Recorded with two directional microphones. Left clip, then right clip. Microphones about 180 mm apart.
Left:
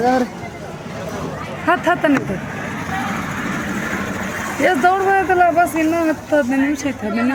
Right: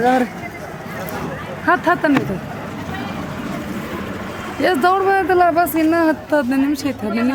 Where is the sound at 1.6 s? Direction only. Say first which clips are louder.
Even; 10° right (ahead or behind).